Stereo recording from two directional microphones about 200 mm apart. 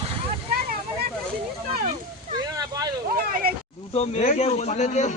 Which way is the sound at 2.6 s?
20° right (ahead or behind).